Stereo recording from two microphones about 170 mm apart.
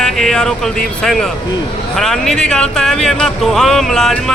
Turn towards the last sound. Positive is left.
turn(degrees=0)  # may be behind; listen again after turning